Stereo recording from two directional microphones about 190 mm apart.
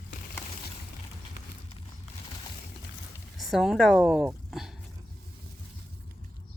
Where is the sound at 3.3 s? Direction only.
Centre (ahead or behind).